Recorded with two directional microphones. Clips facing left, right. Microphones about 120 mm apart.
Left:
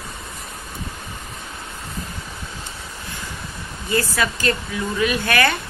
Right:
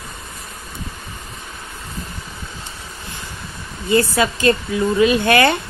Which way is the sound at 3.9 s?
25° right (ahead or behind).